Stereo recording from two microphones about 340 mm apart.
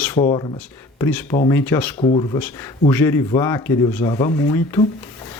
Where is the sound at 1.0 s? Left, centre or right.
Centre.